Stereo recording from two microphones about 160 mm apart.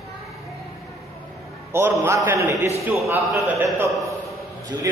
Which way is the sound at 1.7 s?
15° right (ahead or behind).